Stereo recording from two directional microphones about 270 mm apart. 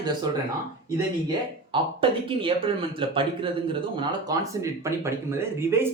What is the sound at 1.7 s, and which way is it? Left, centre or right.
Speech, centre.